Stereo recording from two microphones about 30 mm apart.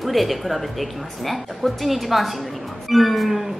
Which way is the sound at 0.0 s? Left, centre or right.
Centre.